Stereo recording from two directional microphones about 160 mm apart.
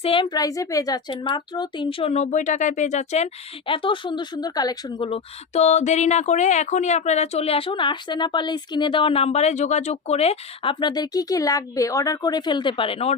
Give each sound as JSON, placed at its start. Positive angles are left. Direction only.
{"t": 0.0, "sound": "speech", "side_deg": 35}
{"t": 3.7, "sound": "speech", "side_deg": 30}